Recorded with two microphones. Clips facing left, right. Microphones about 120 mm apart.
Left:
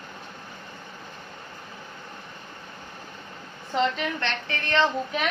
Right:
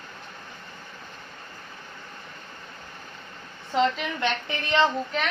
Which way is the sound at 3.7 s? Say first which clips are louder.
Right 1 dB; centre (ahead or behind).